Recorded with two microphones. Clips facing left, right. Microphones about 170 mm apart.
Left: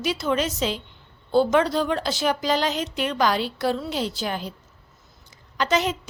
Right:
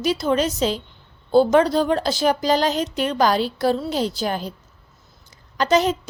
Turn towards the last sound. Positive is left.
turn(degrees=-40)  # may be behind; listen again after turning